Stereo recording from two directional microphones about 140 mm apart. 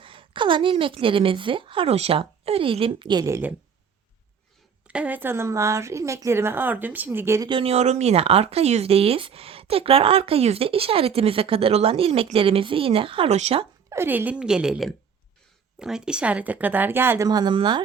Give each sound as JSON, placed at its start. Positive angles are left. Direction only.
{"t": 0.0, "sound": "a woman's voice", "side_deg": -40}
{"t": 3.2, "sound": "speech", "side_deg": -20}
{"t": 4.9, "sound": "a woman's voice", "side_deg": -10}
{"t": 7.4, "sound": "speech", "side_deg": -40}
{"t": 13.9, "sound": "a woman's voice", "side_deg": -15}
{"t": 17.2, "sound": "speech", "side_deg": -30}